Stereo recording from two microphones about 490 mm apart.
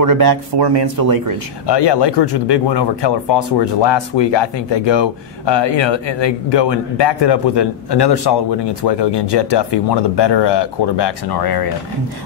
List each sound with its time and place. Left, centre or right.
0.0 s speech: right
1.7 s speech: left